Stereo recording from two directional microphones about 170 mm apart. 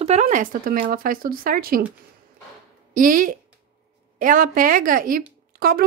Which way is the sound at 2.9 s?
55° right (ahead or behind).